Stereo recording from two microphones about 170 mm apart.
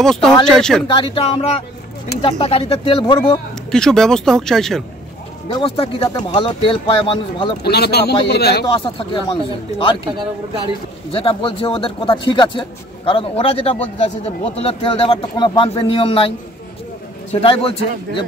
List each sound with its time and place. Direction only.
0.0 s speech: centre (ahead or behind)
0.9 s speech: 30° left (ahead or behind)
3.7 s speech: 5° left (ahead or behind)
5.5 s speech: 30° left (ahead or behind)
7.6 s a man's voice: 70° left (ahead or behind)
8.6 s speech: 30° left (ahead or behind)
11.1 s speech: 35° left (ahead or behind)